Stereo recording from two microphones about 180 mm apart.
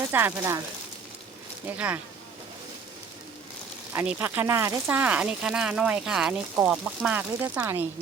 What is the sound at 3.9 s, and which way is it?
Speech, 10° right (ahead or behind).